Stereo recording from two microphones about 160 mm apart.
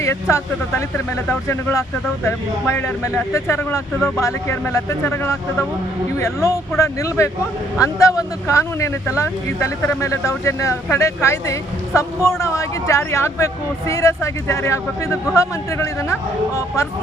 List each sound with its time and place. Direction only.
0.0 s speech: 15° left (ahead or behind)